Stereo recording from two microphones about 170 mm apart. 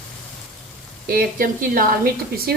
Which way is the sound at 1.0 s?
60° right (ahead or behind).